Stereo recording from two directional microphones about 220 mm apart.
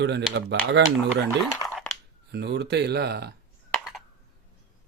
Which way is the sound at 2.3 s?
50° right (ahead or behind).